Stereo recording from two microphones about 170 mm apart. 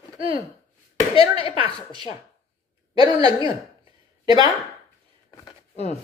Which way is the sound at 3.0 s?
30° left (ahead or behind).